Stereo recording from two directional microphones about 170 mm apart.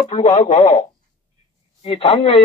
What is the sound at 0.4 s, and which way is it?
Speech, 40° left (ahead or behind).